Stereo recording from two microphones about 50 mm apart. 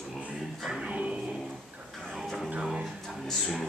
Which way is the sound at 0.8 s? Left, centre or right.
Right.